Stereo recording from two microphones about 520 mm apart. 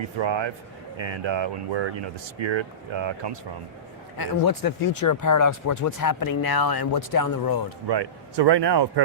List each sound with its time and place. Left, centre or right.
0.2 s speech: right
4.2 s speech: left
7.9 s speech: right